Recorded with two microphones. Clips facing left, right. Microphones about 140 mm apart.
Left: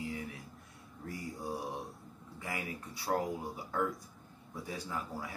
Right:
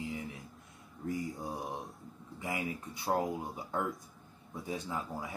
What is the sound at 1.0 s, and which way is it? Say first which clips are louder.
Mantra: right 4 dB; 20° right (ahead or behind).